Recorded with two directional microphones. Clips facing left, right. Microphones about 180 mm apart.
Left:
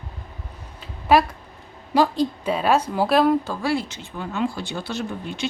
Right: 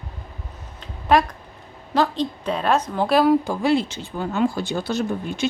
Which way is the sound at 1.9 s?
10° left (ahead or behind).